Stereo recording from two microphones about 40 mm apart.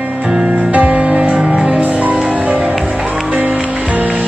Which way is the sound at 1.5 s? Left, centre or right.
Right.